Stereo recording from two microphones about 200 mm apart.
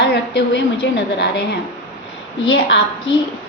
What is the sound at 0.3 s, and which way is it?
A woman's voice, 60° left (ahead or behind).